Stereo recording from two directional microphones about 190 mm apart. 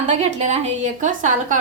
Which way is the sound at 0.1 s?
40° right (ahead or behind).